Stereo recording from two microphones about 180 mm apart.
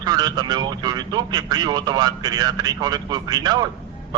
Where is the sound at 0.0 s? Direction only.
20° right (ahead or behind).